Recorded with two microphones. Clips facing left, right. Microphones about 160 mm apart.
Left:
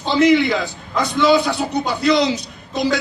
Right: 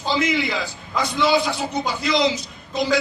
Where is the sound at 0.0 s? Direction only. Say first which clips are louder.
Left 8 dB; 65° left (ahead or behind).